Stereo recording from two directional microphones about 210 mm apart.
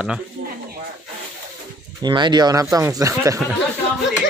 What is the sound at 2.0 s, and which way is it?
Speech, 20° right (ahead or behind).